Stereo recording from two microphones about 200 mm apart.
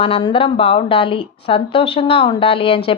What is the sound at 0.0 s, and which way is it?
Speech, 25° left (ahead or behind).